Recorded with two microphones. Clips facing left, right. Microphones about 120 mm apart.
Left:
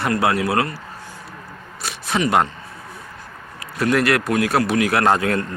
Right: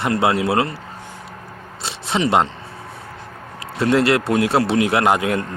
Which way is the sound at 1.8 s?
25° right (ahead or behind).